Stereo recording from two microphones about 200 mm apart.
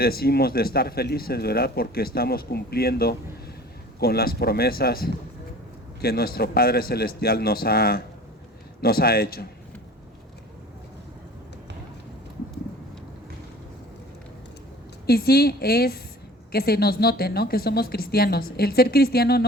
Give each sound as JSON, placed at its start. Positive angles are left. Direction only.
{"t": 0.0, "sound": "speech", "side_deg": 50}
{"t": 15.0, "sound": "speech", "side_deg": 50}